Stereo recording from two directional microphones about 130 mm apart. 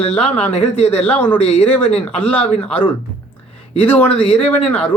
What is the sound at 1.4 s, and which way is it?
Speech, 50° left (ahead or behind).